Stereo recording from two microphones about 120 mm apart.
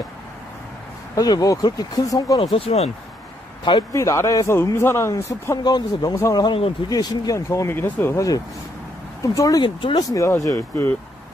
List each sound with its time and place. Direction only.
1.1 s speech: 30° left (ahead or behind)
2.5 s speech: 55° left (ahead or behind)
3.9 s a man's voice: 25° left (ahead or behind)
9.8 s speech: 45° left (ahead or behind)
10.0 s a man's voice: 25° left (ahead or behind)